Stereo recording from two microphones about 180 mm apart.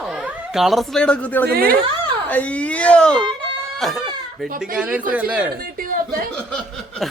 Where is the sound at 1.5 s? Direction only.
55° right (ahead or behind).